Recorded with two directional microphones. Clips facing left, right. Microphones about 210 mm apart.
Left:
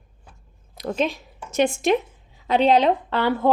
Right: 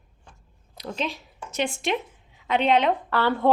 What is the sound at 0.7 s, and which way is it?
A woman's voice, 50° left (ahead or behind).